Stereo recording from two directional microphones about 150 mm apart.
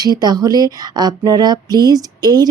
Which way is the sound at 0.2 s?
25° right (ahead or behind).